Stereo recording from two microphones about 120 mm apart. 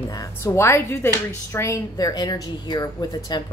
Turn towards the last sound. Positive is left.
turn(degrees=35)  # may be behind; listen again after turning